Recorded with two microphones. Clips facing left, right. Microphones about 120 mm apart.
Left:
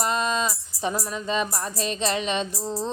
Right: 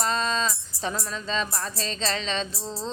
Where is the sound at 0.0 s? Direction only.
15° left (ahead or behind).